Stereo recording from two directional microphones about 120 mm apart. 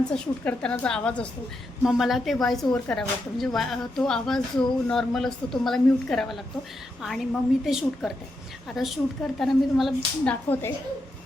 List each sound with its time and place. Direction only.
0.1 s a woman's voice: 10° left (ahead or behind)
1.8 s speech: centre (ahead or behind)
10.2 s a woman's voice: 15° left (ahead or behind)